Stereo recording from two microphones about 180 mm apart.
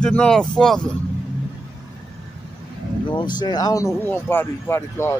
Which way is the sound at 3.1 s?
25° left (ahead or behind).